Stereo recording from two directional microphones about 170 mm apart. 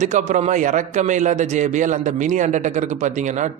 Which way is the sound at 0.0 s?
45° right (ahead or behind).